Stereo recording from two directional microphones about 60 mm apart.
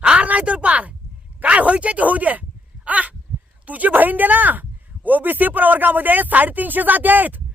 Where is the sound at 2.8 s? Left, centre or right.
Right.